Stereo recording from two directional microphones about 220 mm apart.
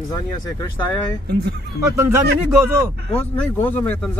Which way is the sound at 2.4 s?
10° right (ahead or behind).